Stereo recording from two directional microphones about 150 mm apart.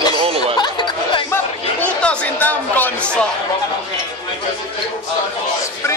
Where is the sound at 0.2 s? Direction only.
40° right (ahead or behind).